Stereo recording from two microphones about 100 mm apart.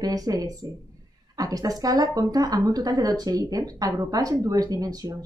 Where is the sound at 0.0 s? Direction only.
40° right (ahead or behind).